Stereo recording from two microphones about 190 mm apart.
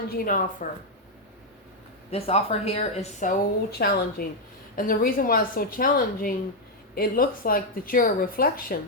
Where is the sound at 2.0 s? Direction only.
35° left (ahead or behind); by 8.8 s 50° left (ahead or behind).